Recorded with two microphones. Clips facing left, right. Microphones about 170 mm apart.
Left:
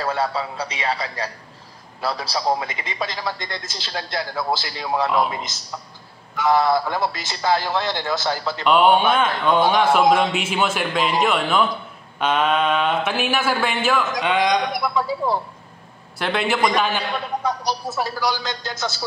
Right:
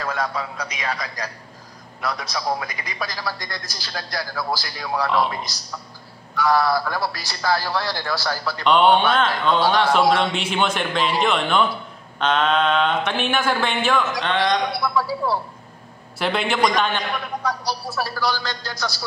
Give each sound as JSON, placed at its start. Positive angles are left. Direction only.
{"t": 0.0, "sound": "a man's voice", "side_deg": 30}
{"t": 8.6, "sound": "a man's voice", "side_deg": 5}
{"t": 16.2, "sound": "speech", "side_deg": 0}
{"t": 17.4, "sound": "a man's voice", "side_deg": 20}